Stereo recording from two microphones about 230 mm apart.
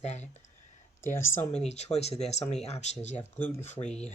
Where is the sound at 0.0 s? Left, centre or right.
Left.